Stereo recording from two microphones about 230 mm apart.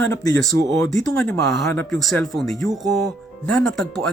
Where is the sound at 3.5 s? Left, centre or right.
Centre.